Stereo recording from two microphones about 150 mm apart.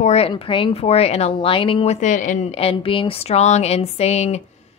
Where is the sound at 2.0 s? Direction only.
55° left (ahead or behind).